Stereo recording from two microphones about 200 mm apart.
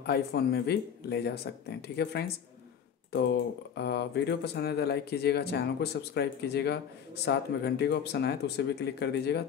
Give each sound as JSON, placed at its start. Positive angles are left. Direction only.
{"t": 0.0, "sound": "speech", "side_deg": 55}